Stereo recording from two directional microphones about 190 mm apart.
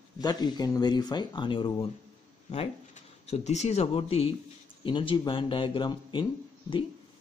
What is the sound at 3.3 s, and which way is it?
Speech, 35° left (ahead or behind).